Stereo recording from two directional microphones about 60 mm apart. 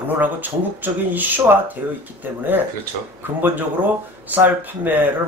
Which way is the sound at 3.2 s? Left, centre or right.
Right.